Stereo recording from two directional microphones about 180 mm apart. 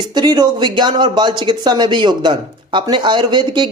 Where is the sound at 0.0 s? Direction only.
25° right (ahead or behind).